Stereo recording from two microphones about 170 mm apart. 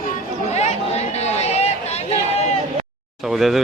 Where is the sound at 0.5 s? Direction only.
40° left (ahead or behind).